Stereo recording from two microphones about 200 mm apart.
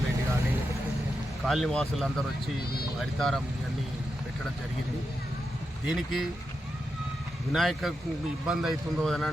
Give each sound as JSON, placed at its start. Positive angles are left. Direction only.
{"t": 1.5, "sound": "a man's voice", "side_deg": 0}
{"t": 5.8, "sound": "a man's voice", "side_deg": 0}
{"t": 7.5, "sound": "a man's voice", "side_deg": 0}